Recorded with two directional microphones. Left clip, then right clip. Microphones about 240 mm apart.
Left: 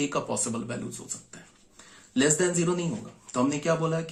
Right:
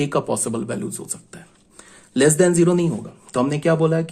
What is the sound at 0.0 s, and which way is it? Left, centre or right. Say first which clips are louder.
Speech: right 7 dB; right.